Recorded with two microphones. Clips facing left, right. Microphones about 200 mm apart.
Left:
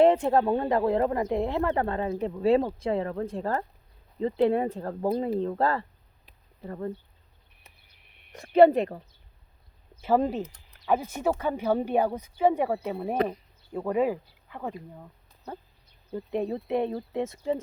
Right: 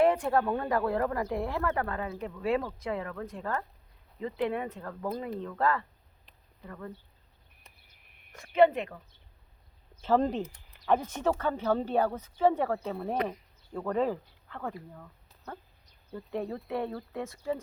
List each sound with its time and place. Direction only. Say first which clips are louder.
0.0 s speech: left 5 dB; 25° left (ahead or behind)
8.3 s speech: left 5 dB; 35° left (ahead or behind)
10.0 s speech: left 2 dB; 10° left (ahead or behind)
10.4 s speech: left 1 dB; 5° right (ahead or behind); by 15.1 s 20° left (ahead or behind)
16.1 s speech: left 5 dB; 20° left (ahead or behind)